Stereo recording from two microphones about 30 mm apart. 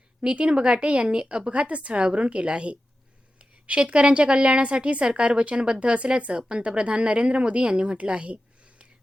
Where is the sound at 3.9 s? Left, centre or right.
Right.